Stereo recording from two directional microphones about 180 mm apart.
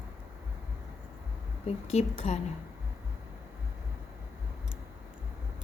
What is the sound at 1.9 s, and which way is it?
Speech, 35° left (ahead or behind).